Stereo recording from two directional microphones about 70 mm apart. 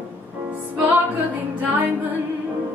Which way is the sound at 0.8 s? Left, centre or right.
Right.